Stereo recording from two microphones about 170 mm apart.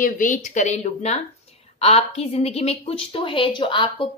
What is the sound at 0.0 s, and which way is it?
A woman's voice, 50° left (ahead or behind).